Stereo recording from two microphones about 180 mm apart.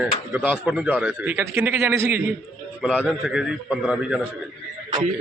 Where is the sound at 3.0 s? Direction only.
Centre (ahead or behind).